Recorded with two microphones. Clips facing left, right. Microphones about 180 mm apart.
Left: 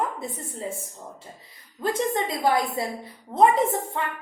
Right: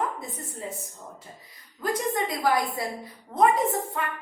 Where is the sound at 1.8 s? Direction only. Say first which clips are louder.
Left 2 dB; 25° left (ahead or behind).